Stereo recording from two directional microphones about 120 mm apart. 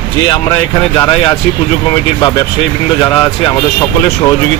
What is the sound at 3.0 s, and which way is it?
Speech, 45° left (ahead or behind).